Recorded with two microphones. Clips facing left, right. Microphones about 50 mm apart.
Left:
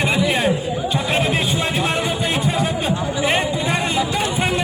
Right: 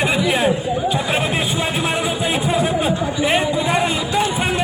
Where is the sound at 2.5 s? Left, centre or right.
Centre.